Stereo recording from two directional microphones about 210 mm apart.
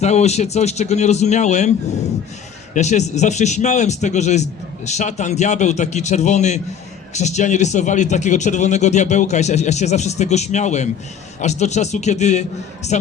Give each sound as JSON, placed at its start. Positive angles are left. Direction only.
{"t": 0.0, "sound": "speech", "side_deg": 30}